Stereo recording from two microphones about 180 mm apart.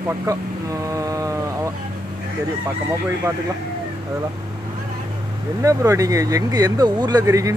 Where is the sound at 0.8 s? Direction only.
20° right (ahead or behind).